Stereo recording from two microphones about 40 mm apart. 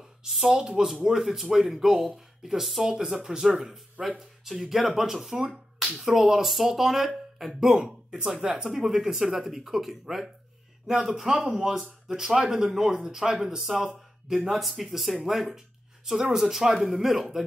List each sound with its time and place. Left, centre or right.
0.5 s speech: centre